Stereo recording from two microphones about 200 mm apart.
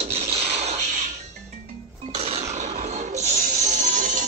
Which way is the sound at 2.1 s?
30° right (ahead or behind).